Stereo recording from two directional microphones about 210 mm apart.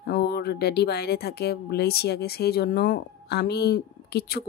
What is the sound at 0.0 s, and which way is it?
Speech, 50° left (ahead or behind).